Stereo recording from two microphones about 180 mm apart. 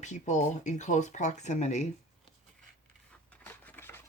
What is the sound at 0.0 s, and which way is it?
Speech, 40° left (ahead or behind).